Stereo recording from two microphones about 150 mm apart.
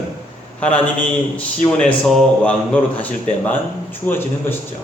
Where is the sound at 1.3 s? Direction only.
5° left (ahead or behind).